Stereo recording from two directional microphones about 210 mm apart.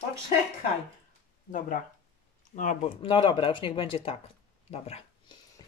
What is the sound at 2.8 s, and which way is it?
Speech, 25° left (ahead or behind).